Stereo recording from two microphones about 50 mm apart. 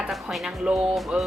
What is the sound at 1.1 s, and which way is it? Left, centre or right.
Music, centre.